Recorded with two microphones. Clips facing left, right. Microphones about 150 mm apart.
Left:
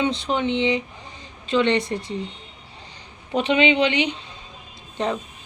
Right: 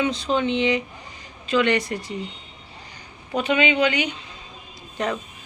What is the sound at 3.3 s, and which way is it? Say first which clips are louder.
A woman's voice: left 2 dB; 30° left (ahead or behind).